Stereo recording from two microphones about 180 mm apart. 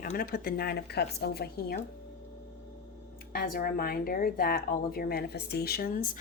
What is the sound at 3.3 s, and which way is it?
Speech, 55° left (ahead or behind).